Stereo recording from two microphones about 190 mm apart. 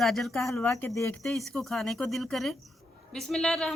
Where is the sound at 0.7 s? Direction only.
15° left (ahead or behind).